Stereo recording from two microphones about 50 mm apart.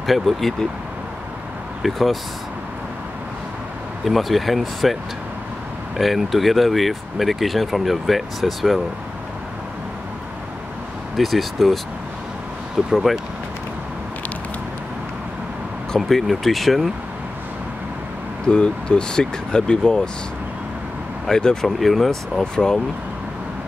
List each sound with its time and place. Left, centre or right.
0.0 s speech: centre
1.8 s speech: centre
4.0 s speech: centre
5.9 s speech: centre
11.1 s speech: centre
12.9 s speech: centre
16.1 s speech: centre
18.5 s speech: centre
21.3 s speech: centre
21.6 s speech: centre
22.4 s speech: centre